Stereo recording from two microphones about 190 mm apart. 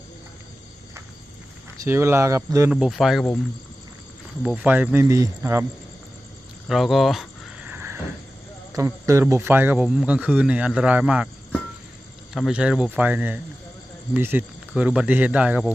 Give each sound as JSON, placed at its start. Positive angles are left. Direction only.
{"t": 1.8, "sound": "speech", "side_deg": -15}
{"t": 2.6, "sound": "speech", "side_deg": -5}
{"t": 4.4, "sound": "speech", "side_deg": -10}
{"t": 6.7, "sound": "a sound", "side_deg": 0}
{"t": 8.7, "sound": "speech", "side_deg": -15}
{"t": 12.3, "sound": "speech", "side_deg": 0}